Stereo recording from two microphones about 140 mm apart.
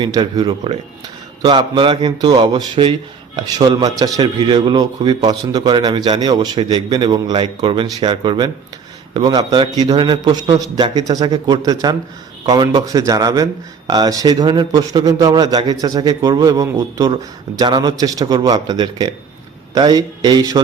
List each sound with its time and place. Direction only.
0.0 s a man's voice: 30° right (ahead or behind)